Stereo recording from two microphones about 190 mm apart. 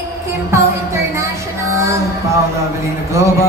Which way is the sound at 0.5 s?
15° right (ahead or behind).